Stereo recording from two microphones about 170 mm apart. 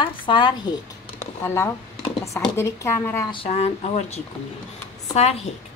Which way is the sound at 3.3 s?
35° left (ahead or behind).